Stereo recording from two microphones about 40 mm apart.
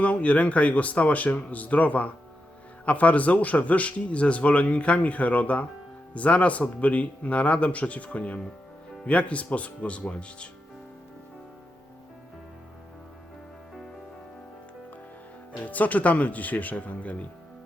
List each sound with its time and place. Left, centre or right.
0.0 s a man's voice: left
15.6 s speech: left